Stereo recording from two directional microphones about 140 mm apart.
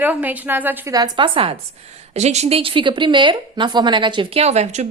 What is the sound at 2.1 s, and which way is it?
A woman's voice, 50° right (ahead or behind).